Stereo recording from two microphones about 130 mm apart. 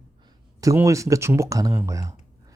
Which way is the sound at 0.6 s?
25° right (ahead or behind).